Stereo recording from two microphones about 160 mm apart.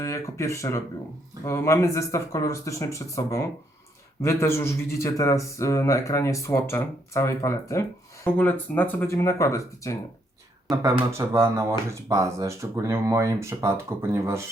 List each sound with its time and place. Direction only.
0.0 s speech: 20° left (ahead or behind)
11.1 s speech: 15° right (ahead or behind)